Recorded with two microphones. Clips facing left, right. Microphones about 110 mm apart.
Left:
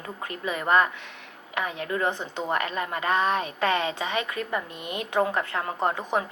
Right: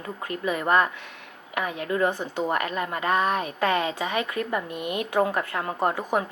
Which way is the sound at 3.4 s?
20° right (ahead or behind).